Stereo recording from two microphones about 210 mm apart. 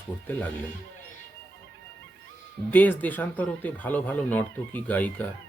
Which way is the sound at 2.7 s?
10° left (ahead or behind).